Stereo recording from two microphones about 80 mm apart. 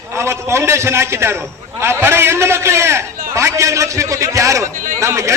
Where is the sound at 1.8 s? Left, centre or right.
Right.